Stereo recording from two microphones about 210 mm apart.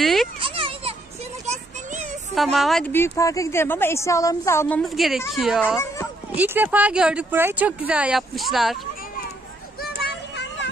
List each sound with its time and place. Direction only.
0.0 s children playing: centre (ahead or behind)
0.4 s children playing: 25° right (ahead or behind)
1.4 s a sound: 35° right (ahead or behind)
2.3 s a woman's voice: centre (ahead or behind)
9.8 s child singing: 55° left (ahead or behind)